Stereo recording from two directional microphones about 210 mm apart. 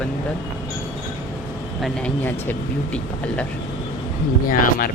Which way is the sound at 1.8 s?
5° left (ahead or behind).